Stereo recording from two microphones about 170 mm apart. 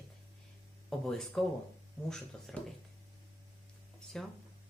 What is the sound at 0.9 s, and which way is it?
A woman's voice, centre (ahead or behind).